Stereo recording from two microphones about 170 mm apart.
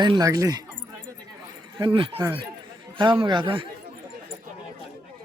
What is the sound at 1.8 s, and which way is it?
Speech, 30° right (ahead or behind).